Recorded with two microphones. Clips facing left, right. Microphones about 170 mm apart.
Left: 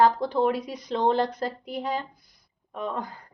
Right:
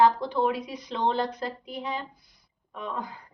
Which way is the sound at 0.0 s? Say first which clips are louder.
Left 1 dB; 40° left (ahead or behind).